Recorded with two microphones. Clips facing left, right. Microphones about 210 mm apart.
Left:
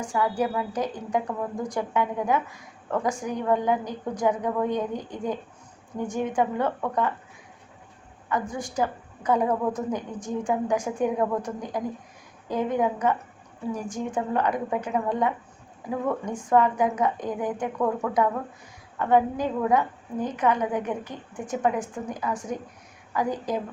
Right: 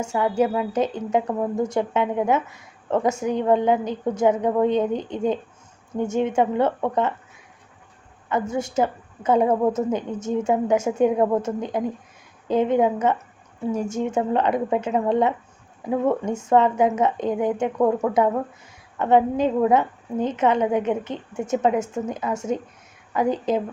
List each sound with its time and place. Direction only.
0.0 s a woman's voice: 25° right (ahead or behind)
8.3 s a woman's voice: 25° right (ahead or behind)